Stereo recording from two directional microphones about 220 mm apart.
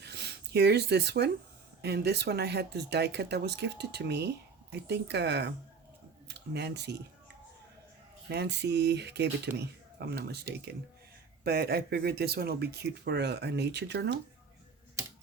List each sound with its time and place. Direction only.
0.0 s a sound: 50° right (ahead or behind)
1.8 s speech: 50° right (ahead or behind)
8.3 s speech: 50° right (ahead or behind)